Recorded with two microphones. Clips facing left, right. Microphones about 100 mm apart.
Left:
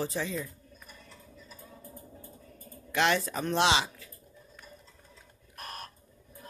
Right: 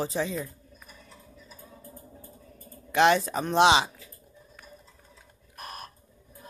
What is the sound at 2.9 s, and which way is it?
Speech, 20° right (ahead or behind).